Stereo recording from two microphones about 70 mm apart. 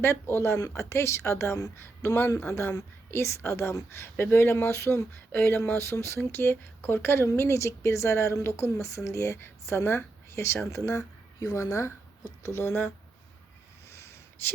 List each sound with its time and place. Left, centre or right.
0.0 s a woman's voice: left
5.3 s a woman's voice: left
13.9 s a sound: left